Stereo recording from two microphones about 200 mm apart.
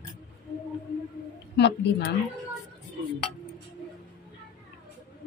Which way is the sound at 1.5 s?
55° left (ahead or behind).